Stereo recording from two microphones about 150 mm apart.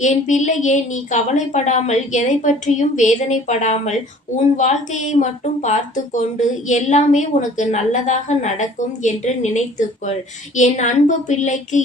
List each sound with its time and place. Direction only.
0.0 s a woman's voice: 55° left (ahead or behind)
6.1 s a woman's voice: 55° left (ahead or behind)